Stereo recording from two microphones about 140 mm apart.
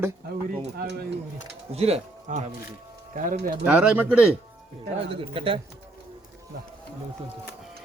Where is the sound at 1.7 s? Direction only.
45° right (ahead or behind).